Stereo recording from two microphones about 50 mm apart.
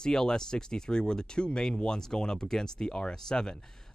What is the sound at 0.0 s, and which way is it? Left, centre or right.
Speech, centre.